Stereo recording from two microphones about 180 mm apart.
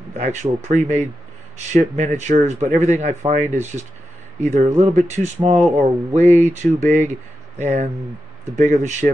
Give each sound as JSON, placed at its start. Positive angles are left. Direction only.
{"t": 0.1, "sound": "speech", "side_deg": -40}